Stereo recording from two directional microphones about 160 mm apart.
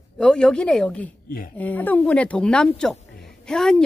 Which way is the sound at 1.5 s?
10° left (ahead or behind).